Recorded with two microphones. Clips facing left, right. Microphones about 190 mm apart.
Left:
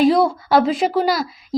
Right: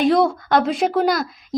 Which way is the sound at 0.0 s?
Centre (ahead or behind).